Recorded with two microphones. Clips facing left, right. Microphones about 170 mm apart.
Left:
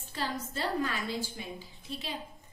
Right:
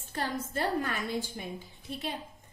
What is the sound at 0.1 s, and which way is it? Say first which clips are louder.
A woman's voice: right 2 dB; 50° right (ahead or behind).